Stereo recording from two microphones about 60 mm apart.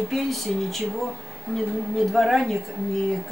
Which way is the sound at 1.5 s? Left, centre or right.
Centre.